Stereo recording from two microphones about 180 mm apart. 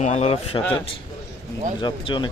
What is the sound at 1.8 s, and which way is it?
Speech, 30° left (ahead or behind).